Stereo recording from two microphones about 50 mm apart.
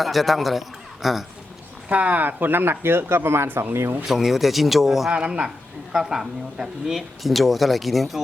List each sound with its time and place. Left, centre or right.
0.0 s speech: centre
1.9 s speech: right
4.0 s speech: centre
5.1 s speech: right
5.9 s speech: centre